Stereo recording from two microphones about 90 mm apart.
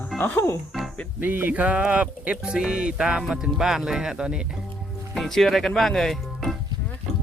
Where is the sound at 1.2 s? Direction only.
20° right (ahead or behind).